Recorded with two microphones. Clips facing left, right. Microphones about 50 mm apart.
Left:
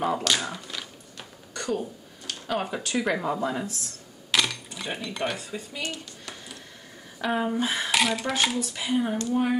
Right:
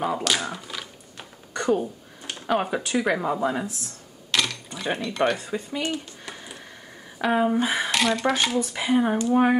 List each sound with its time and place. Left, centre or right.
0.0 s speech: centre
1.1 s speech: right
4.3 s a sound: centre
4.9 s speech: centre
5.5 s a sound: right
7.2 s speech: centre
7.9 s speech: centre
8.5 s speech: right
9.3 s speech: right